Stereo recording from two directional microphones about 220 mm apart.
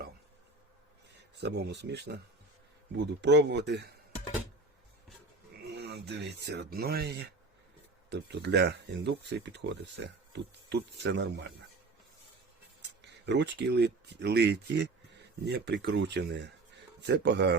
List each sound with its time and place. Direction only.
1.4 s speech: 50° right (ahead or behind)
5.7 s speech: 50° right (ahead or behind)
13.0 s speech: 50° right (ahead or behind)